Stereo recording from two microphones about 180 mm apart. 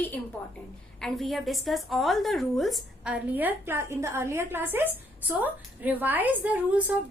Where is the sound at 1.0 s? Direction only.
Centre (ahead or behind).